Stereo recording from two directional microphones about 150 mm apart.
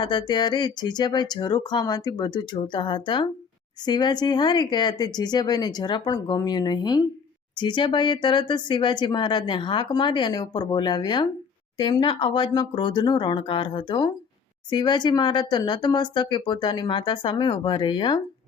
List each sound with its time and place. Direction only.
0.0 s speech: 30° left (ahead or behind)